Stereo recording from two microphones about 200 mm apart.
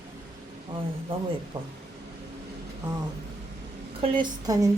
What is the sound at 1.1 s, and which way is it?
Speech, 30° right (ahead or behind).